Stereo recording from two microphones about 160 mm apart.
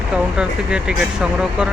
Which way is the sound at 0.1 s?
5° right (ahead or behind).